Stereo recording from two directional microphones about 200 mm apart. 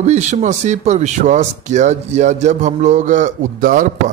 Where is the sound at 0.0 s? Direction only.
35° right (ahead or behind).